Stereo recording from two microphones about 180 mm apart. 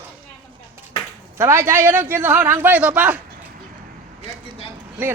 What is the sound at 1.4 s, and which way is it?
Speech, 15° right (ahead or behind).